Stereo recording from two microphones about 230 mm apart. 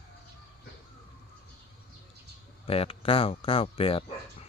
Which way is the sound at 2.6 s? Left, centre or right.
Left.